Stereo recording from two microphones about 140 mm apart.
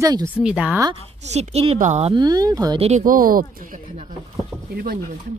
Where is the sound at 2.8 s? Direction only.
55° right (ahead or behind).